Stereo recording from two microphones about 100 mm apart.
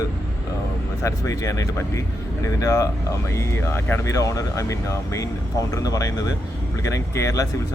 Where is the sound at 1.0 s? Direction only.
30° left (ahead or behind).